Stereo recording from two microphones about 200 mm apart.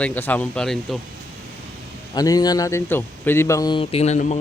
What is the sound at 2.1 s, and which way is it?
Speech, 20° left (ahead or behind).